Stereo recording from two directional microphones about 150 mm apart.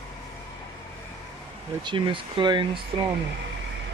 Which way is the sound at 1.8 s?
30° right (ahead or behind).